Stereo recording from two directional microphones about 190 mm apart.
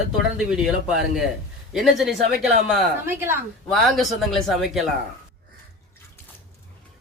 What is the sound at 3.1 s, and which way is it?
Speech, 10° right (ahead or behind).